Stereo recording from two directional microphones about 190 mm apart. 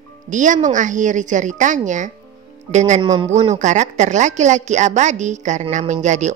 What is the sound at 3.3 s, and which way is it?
A woman's voice, 40° right (ahead or behind).